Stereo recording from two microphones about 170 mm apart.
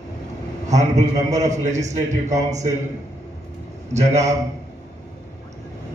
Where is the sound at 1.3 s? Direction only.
45° right (ahead or behind).